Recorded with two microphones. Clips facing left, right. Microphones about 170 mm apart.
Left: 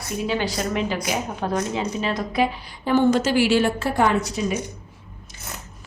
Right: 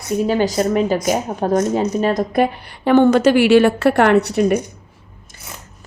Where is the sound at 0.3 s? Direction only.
45° right (ahead or behind); by 4.5 s 65° right (ahead or behind).